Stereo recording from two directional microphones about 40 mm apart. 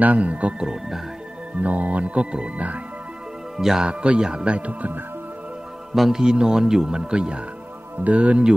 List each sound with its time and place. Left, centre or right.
0.0 s speech: right
1.6 s speech: right
3.5 s speech: centre
3.8 s speech: right
5.9 s a man's voice: centre; by 8.5 s right